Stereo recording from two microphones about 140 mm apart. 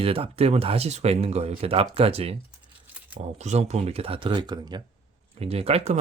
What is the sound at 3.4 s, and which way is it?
Speech, 55° right (ahead or behind).